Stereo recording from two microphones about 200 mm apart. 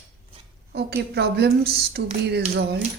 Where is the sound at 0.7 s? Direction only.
55° right (ahead or behind).